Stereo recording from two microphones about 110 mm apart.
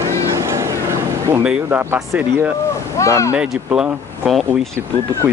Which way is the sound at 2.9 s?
30° left (ahead or behind).